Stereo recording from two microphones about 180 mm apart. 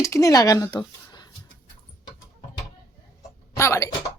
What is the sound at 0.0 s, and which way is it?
Speech, 20° left (ahead or behind).